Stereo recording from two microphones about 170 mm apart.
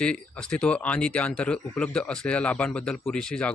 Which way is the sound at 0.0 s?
5° left (ahead or behind).